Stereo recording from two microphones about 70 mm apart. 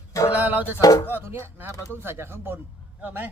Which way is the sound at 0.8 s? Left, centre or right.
Left.